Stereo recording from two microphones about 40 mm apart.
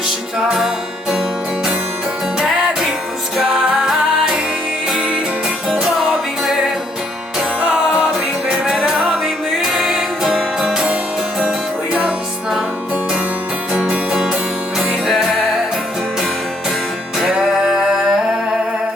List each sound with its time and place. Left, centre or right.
0.3 s music: centre
3.4 s music: centre
8.4 s music: centre
11.9 s music: right
14.1 s music: centre
15.0 s music: centre
17.4 s a sound: centre